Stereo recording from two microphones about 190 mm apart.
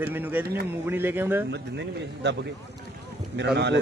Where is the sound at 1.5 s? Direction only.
65° right (ahead or behind).